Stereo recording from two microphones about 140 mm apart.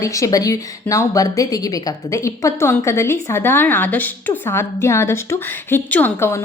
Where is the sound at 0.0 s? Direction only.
25° left (ahead or behind).